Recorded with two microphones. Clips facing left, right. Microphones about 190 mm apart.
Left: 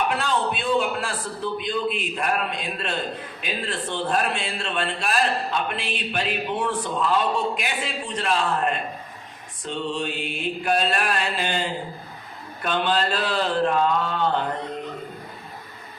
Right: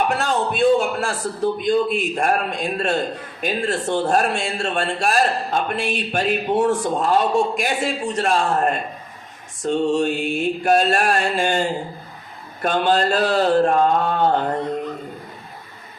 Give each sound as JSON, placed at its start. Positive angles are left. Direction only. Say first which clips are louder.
{"t": 0.1, "sound": "speech", "louder": "right 3 dB", "side_deg": -45}